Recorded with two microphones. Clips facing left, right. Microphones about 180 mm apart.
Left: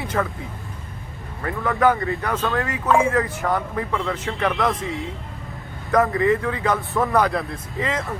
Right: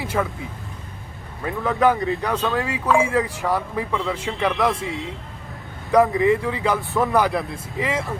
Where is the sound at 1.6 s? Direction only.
20° right (ahead or behind).